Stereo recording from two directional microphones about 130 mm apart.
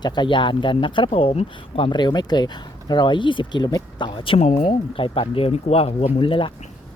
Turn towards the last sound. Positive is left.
turn(degrees=40)  # may be behind; listen again after turning